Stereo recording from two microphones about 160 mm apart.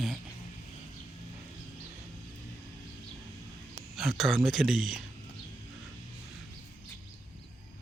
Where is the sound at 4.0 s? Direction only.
Centre (ahead or behind).